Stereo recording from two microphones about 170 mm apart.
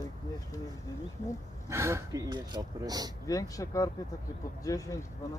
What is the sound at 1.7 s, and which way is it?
Speech, 15° right (ahead or behind).